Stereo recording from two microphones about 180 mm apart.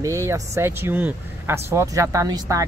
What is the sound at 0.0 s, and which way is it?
Speech, 15° right (ahead or behind).